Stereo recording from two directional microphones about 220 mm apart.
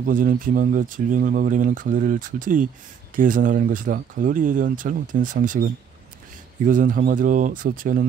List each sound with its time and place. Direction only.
0.0 s speech: 40° right (ahead or behind)